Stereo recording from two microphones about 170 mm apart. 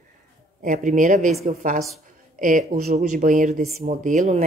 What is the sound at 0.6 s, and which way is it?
Speech, 50° right (ahead or behind).